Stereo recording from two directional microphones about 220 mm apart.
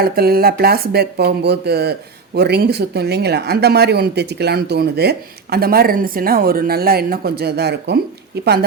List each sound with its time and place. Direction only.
0.0 s speech: 45° right (ahead or behind)